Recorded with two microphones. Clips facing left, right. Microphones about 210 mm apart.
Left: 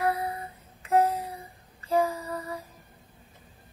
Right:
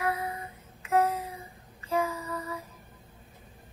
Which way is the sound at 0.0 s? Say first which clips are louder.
Left 3 dB; 35° left (ahead or behind).